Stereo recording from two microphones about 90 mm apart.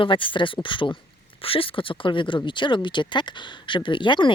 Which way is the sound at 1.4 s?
90° left.